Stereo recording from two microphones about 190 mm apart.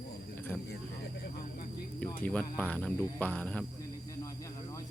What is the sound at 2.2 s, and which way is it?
Speech, 10° left (ahead or behind).